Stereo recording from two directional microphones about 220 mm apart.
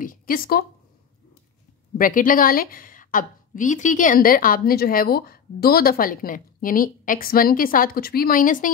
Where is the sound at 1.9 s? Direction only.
40° left (ahead or behind).